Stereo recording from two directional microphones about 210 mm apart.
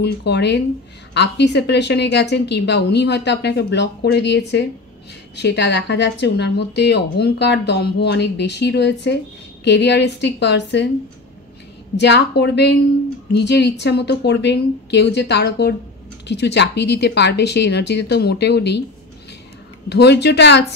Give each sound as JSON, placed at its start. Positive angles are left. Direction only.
{"t": 0.0, "sound": "speech", "side_deg": 55}
{"t": 12.0, "sound": "speech", "side_deg": 55}
{"t": 19.9, "sound": "speech", "side_deg": 55}